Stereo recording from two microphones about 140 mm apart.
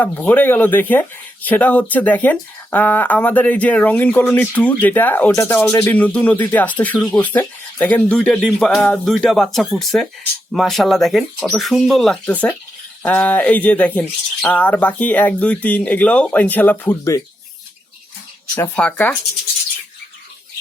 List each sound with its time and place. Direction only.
0.0 s speech: 15° left (ahead or behind)
18.5 s speech: 15° left (ahead or behind)